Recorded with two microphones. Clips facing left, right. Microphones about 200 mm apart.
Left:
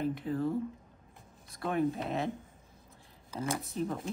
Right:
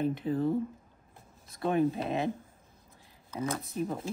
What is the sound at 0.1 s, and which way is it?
Speech, 25° right (ahead or behind).